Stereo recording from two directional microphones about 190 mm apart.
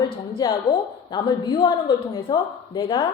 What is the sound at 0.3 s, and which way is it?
A woman's voice, 25° left (ahead or behind).